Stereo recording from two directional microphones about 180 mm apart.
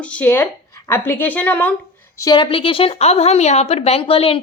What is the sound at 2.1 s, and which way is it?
A woman's voice, 20° left (ahead or behind).